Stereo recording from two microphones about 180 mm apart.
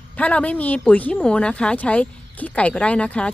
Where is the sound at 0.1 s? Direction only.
10° left (ahead or behind).